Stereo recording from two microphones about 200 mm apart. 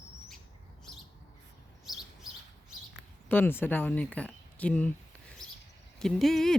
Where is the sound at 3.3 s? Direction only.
10° left (ahead or behind).